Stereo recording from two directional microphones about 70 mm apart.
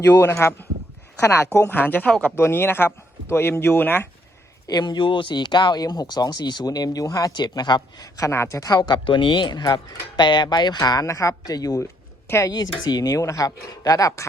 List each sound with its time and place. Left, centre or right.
0.0 s speech: left
0.3 s speech: left
4.7 s speech: left
8.3 s speech: left
8.7 s speech: left
11.0 s speech: left
11.5 s speech: left